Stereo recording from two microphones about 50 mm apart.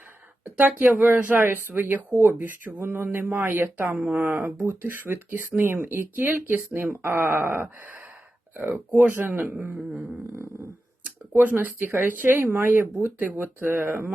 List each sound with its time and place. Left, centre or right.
0.5 s speech: right
2.9 s speech: right
3.9 s speech: right
4.2 s speech: right
11.6 s speech: right